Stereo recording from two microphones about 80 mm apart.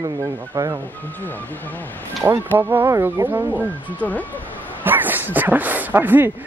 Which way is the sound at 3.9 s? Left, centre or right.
Centre.